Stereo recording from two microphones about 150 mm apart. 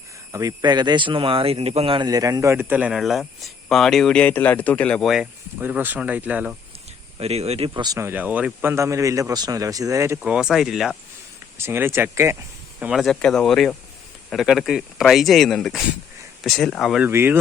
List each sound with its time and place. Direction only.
0.3 s speech: 20° right (ahead or behind)
7.2 s speech: 45° right (ahead or behind)
7.7 s speech: 25° right (ahead or behind)
10.2 s speech: 10° right (ahead or behind)
11.5 s speech: 15° right (ahead or behind)
12.8 s speech: centre (ahead or behind)
17.1 s speech: 15° right (ahead or behind)